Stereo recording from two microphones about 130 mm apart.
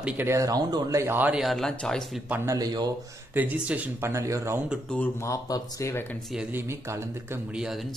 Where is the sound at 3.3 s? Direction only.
10° right (ahead or behind).